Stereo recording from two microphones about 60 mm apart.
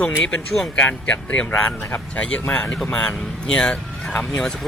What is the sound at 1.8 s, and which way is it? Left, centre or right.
Speech, left.